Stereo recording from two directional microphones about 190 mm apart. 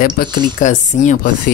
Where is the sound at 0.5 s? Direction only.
40° left (ahead or behind).